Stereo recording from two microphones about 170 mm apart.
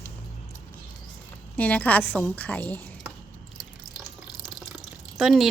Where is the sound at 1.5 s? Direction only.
10° left (ahead or behind).